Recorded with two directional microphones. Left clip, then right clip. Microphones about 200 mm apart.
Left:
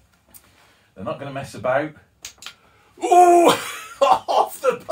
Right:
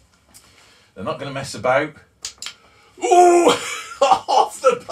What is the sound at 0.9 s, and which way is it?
Speech, 5° left (ahead or behind).